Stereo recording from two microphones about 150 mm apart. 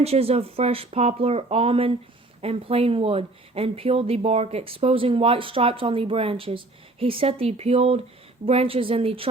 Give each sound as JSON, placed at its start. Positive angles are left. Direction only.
{"t": 0.0, "sound": "speech", "side_deg": -40}